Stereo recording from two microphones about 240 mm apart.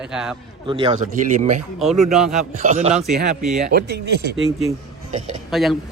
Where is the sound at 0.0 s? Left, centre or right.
Centre.